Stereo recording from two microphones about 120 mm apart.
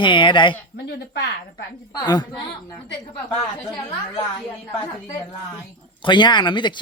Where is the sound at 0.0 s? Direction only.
45° left (ahead or behind).